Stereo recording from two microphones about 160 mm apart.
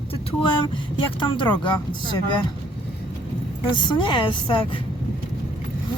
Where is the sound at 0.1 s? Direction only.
35° left (ahead or behind).